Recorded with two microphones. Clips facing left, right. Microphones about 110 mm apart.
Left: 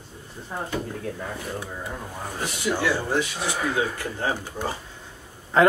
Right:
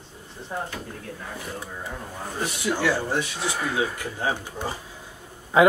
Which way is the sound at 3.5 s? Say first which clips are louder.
Left 1 dB; centre (ahead or behind).